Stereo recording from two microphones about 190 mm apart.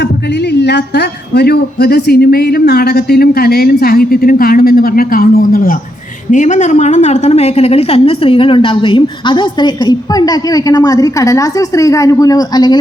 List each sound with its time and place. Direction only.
0.5 s a woman's voice: 60° left (ahead or behind); by 12.7 s 20° left (ahead or behind)